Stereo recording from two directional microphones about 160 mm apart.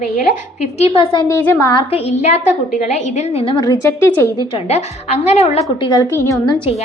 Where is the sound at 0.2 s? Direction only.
45° left (ahead or behind).